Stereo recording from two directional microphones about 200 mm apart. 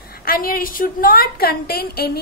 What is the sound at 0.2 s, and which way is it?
A woman's voice, 45° left (ahead or behind).